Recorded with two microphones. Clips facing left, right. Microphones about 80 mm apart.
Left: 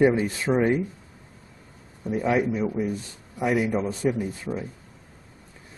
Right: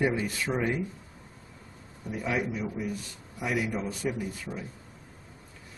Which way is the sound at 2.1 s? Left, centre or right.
Left.